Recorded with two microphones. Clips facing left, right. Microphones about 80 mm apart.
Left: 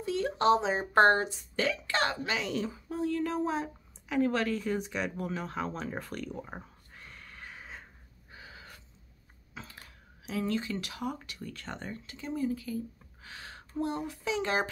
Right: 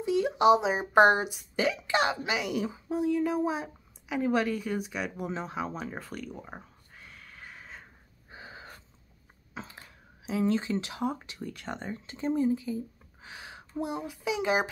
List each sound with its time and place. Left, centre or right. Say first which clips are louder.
0.0 s speech: right 4 dB; centre
5.2 s speech: right 1 dB; centre
5.6 s a sound: even; centre
8.3 s gasp: right 4 dB; right
9.5 s speech: right 4 dB; right
12.2 s speech: right 6 dB; right; by 14.7 s centre